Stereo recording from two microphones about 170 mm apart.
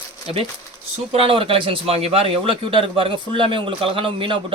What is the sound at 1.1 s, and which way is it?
Speech, 35° right (ahead or behind).